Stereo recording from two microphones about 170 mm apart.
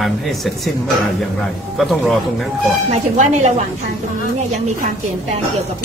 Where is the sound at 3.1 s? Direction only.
45° right (ahead or behind).